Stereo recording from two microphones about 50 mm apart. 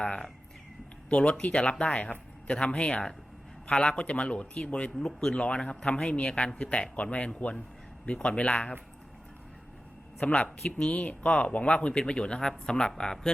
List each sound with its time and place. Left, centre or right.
0.0 s speech: centre
10.2 s speech: left